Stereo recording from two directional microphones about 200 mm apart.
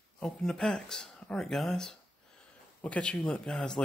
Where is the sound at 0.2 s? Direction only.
5° left (ahead or behind).